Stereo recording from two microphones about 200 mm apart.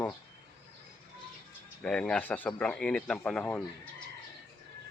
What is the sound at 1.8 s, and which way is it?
Speech, 5° left (ahead or behind).